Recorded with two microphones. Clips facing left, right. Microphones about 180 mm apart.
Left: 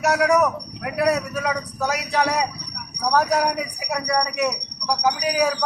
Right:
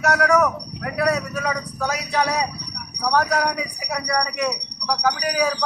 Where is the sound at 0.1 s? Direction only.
15° left (ahead or behind).